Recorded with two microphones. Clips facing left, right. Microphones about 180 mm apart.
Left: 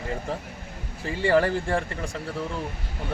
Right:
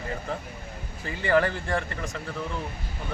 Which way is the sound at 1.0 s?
30° left (ahead or behind).